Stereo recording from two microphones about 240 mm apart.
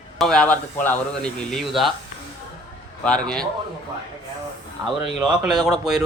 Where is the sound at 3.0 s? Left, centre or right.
Centre.